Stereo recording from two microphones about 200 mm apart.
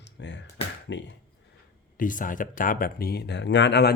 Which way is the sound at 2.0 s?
40° left (ahead or behind).